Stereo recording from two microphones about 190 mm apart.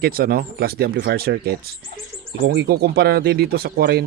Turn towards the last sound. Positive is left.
turn(degrees=-55)  # may be behind; listen again after turning